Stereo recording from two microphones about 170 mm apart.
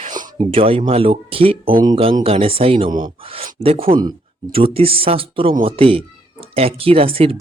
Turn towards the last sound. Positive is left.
turn(degrees=-35)  # may be behind; listen again after turning